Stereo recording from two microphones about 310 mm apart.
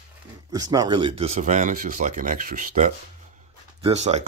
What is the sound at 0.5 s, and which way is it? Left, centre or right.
Speech, centre.